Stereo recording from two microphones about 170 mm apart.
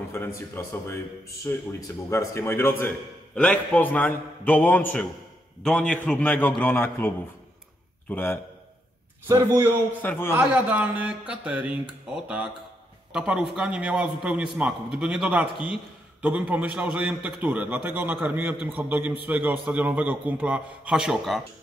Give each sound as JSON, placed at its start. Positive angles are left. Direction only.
{"t": 0.1, "sound": "a man's voice", "side_deg": 15}
{"t": 8.1, "sound": "a man's voice", "side_deg": 10}
{"t": 9.3, "sound": "a man's voice", "side_deg": -15}
{"t": 10.0, "sound": "a man's voice", "side_deg": 15}
{"t": 10.3, "sound": "a man's voice", "side_deg": -10}
{"t": 13.1, "sound": "a man's voice", "side_deg": -5}